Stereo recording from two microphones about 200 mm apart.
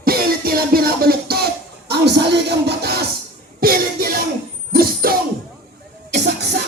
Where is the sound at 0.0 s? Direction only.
50° right (ahead or behind).